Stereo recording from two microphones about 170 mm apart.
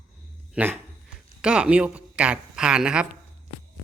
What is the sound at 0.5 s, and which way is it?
Speech, 10° right (ahead or behind).